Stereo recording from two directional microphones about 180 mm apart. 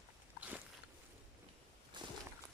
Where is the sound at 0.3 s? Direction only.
10° right (ahead or behind).